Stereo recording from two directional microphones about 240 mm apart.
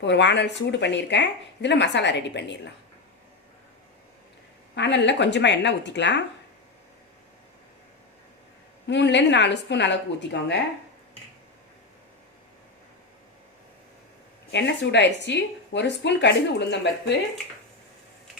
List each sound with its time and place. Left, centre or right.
0.0 s speech: left
4.7 s speech: left
8.9 s speech: left
14.5 s speech: left